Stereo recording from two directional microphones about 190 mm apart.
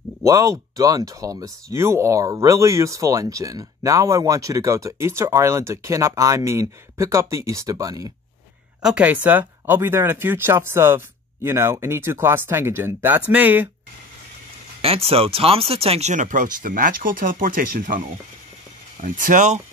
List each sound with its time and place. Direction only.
0.2 s speech: 15° right (ahead or behind)
8.8 s speech: 5° right (ahead or behind)
14.8 s speech: 30° right (ahead or behind)